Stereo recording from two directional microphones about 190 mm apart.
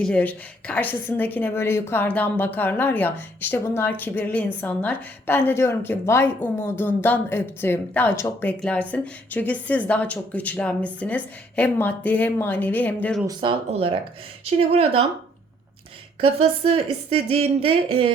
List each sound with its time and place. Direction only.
0.0 s a woman's voice: 5° left (ahead or behind)
13.2 s speech: 25° right (ahead or behind)
16.2 s speech: 30° right (ahead or behind)